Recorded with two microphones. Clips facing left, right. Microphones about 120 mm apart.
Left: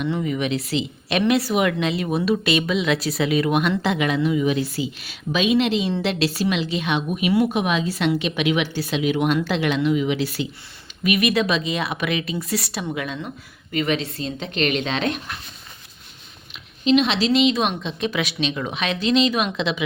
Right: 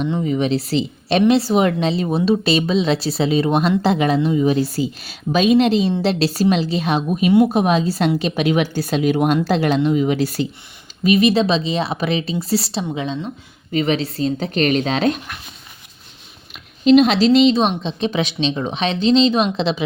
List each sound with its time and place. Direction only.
0.1 s speech: 30° right (ahead or behind)
11.0 s a woman's voice: 30° right (ahead or behind)
16.5 s a woman's voice: 40° right (ahead or behind)